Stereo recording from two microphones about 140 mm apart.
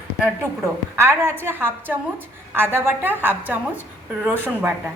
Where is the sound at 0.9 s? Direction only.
20° right (ahead or behind).